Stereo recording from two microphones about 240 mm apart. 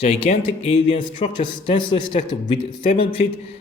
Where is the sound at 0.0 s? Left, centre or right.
Left.